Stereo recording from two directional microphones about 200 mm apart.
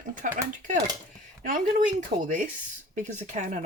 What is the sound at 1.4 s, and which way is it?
Speech, 40° right (ahead or behind).